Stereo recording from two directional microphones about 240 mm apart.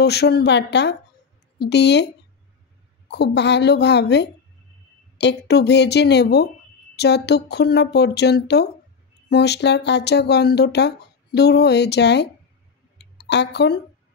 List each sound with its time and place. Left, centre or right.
0.0 s speech: left
3.1 s speech: left
12.9 s a sound: left